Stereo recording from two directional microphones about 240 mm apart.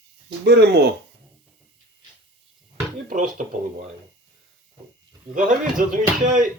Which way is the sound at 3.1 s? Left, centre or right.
Right.